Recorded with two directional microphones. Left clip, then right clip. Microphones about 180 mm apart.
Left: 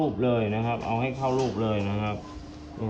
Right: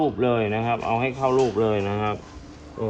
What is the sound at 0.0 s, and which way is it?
Speech, 45° right (ahead or behind).